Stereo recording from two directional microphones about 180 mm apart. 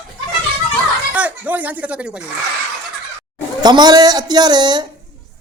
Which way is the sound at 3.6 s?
25° right (ahead or behind).